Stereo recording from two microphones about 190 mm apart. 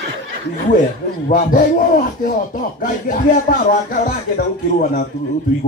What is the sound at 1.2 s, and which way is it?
Speech, 45° left (ahead or behind).